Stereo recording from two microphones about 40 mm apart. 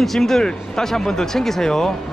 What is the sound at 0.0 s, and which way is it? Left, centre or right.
Speech, centre.